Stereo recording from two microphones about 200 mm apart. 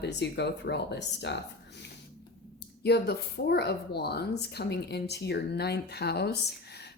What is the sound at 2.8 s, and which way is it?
A woman's voice, 55° left (ahead or behind).